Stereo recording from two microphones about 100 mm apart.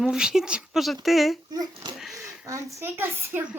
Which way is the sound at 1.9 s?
Centre (ahead or behind).